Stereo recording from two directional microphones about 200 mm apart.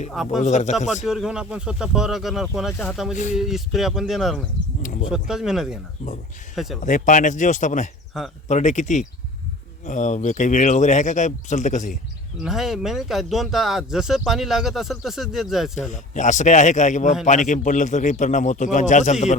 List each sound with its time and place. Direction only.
0.4 s speech: 35° left (ahead or behind)
1.0 s speech: 5° right (ahead or behind)
4.8 s a sound: 40° left (ahead or behind)
5.1 s speech: 5° right (ahead or behind)
6.8 s speech: 40° left (ahead or behind)
12.4 s speech: centre (ahead or behind)
15.9 s speech: 35° left (ahead or behind)